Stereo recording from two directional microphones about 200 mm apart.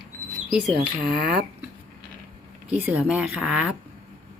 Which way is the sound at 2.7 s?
10° right (ahead or behind).